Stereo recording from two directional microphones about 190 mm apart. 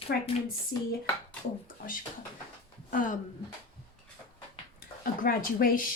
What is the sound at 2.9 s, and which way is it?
Speech, 45° left (ahead or behind).